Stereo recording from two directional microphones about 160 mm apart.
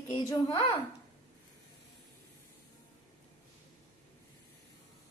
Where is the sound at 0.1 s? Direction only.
25° left (ahead or behind).